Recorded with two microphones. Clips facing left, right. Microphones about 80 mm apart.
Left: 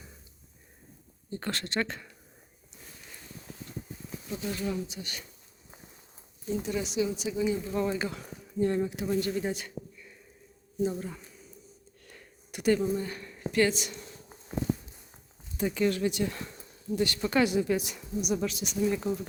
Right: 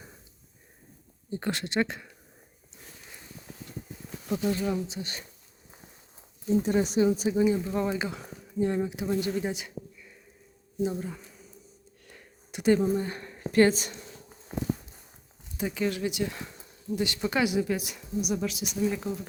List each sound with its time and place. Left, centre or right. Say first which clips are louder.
1.3 s speech: right 3 dB; centre
4.4 s speech: right 4 dB; right
6.5 s speech: right 7 dB; right
7.7 s speech: right 1 dB; centre
9.4 s a sound: even; centre
10.9 s speech: right 2 dB; centre
12.0 s a sound: even; centre
12.8 s speech: right 3 dB; right
15.5 s speech: left 2 dB; centre